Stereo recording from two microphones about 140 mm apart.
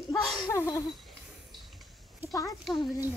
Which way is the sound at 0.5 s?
20° left (ahead or behind).